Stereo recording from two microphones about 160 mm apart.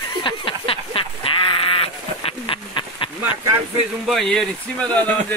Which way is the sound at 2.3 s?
35° left (ahead or behind).